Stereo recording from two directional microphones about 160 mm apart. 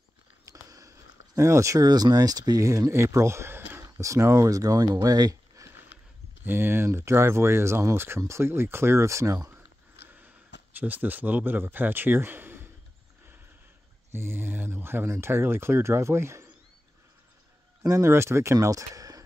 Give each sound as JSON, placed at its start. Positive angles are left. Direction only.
{"t": 0.5, "sound": "speech", "side_deg": -20}
{"t": 5.9, "sound": "a sound", "side_deg": 90}
{"t": 6.4, "sound": "speech", "side_deg": -15}
{"t": 10.0, "sound": "sniff", "side_deg": -10}
{"t": 10.7, "sound": "speech", "side_deg": -10}
{"t": 14.1, "sound": "speech", "side_deg": -15}
{"t": 17.8, "sound": "speech", "side_deg": -20}